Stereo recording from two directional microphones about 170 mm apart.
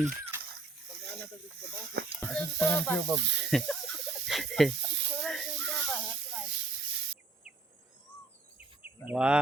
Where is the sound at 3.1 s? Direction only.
90° right.